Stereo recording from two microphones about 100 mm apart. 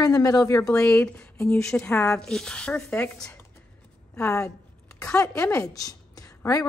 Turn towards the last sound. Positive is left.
turn(degrees=35)  # may be behind; listen again after turning